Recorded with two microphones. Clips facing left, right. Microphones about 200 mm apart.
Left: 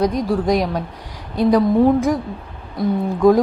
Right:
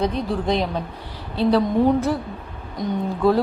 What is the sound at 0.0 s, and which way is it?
A woman's voice, 10° left (ahead or behind).